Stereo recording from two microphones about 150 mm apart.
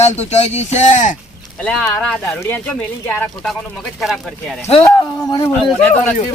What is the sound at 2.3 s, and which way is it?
Speech, 15° left (ahead or behind).